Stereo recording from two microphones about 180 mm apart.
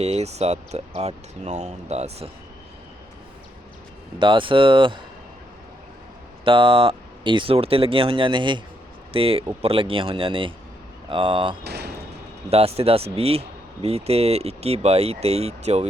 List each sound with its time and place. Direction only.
0.0 s speech: 35° right (ahead or behind)
4.2 s speech: 25° right (ahead or behind)
6.4 s speech: 30° right (ahead or behind)
11.6 s a sound: 65° right (ahead or behind)
12.5 s speech: 35° right (ahead or behind)